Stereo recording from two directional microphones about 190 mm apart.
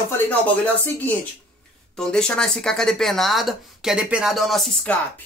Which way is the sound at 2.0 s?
5° left (ahead or behind).